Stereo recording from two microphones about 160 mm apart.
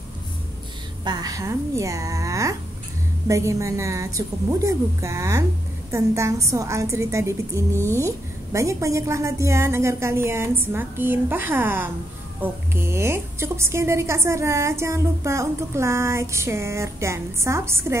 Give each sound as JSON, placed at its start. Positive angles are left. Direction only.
{"t": 1.0, "sound": "a woman's voice", "side_deg": -25}